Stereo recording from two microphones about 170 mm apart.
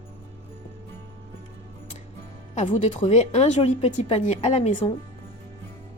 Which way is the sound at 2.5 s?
45° left (ahead or behind).